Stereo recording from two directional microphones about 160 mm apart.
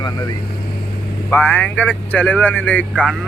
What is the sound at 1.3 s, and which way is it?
Speech, 10° left (ahead or behind).